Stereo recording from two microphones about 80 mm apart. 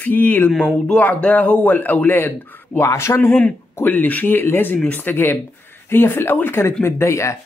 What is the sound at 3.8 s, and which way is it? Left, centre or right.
Speech, left.